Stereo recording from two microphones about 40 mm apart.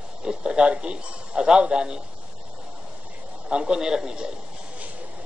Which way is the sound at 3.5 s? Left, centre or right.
Centre.